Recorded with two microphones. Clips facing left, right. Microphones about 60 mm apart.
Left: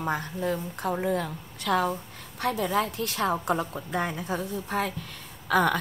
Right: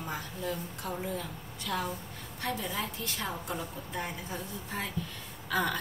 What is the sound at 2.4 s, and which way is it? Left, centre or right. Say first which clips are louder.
A woman's voice: left 9 dB; left.